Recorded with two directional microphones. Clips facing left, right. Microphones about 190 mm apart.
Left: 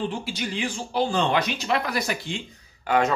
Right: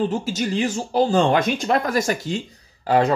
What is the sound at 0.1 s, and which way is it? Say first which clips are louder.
Speech: right 7 dB; 45° right (ahead or behind).